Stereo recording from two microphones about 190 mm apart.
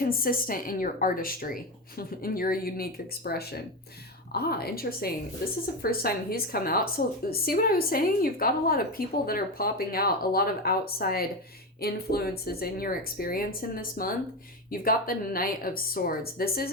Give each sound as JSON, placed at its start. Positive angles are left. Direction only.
{"t": 0.0, "sound": "a woman's voice", "side_deg": 50}